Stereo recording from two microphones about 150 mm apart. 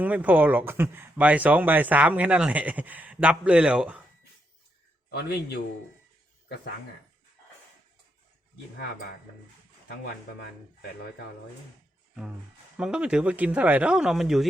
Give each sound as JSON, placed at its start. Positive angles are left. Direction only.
{"t": 0.0, "sound": "speech", "side_deg": -10}
{"t": 5.1, "sound": "a man's voice", "side_deg": 90}
{"t": 12.7, "sound": "speech", "side_deg": -5}